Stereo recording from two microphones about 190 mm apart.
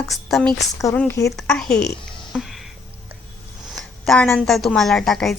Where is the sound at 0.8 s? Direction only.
15° left (ahead or behind).